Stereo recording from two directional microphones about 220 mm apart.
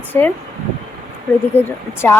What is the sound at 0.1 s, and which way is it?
Speech, 10° left (ahead or behind).